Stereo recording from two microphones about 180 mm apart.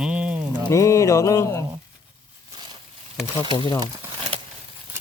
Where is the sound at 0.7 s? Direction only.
15° left (ahead or behind).